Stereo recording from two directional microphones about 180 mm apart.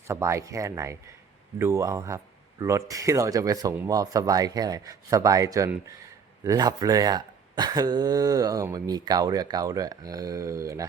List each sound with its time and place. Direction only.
0.1 s speech: 15° right (ahead or behind)